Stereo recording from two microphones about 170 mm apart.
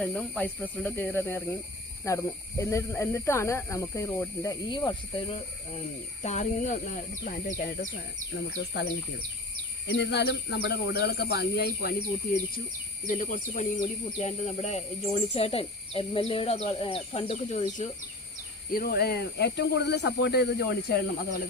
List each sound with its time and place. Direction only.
0.0 s speech: 5° left (ahead or behind)
4.7 s speech: 25° left (ahead or behind)
6.2 s speech: 45° left (ahead or behind)
9.9 s speech: 80° left; by 11.9 s 65° left (ahead or behind)
13.1 s speech: 50° left (ahead or behind)
18.7 s speech: 65° left (ahead or behind)